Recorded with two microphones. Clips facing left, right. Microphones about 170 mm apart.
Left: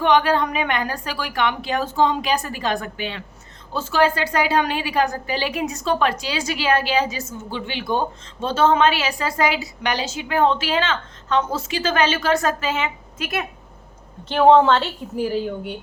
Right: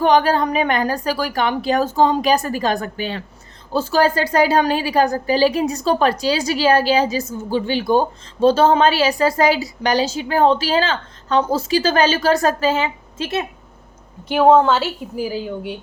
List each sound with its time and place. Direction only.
0.0 s a woman's voice: 40° right (ahead or behind)
14.3 s a woman's voice: 5° right (ahead or behind)